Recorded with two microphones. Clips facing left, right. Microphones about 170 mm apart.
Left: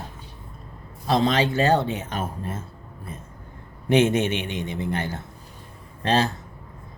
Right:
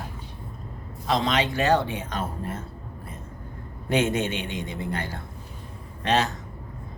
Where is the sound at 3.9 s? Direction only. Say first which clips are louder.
Left 4 dB; 20° left (ahead or behind).